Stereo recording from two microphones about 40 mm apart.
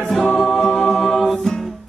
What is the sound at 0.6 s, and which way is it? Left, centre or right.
A capella, centre.